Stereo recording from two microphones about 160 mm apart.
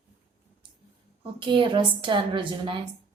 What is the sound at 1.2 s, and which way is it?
A woman's voice, 35° right (ahead or behind).